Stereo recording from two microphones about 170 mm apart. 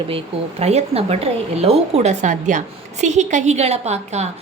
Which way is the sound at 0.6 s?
40° right (ahead or behind).